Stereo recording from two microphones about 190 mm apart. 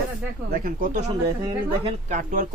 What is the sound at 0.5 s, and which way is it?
A man's voice, 45° right (ahead or behind).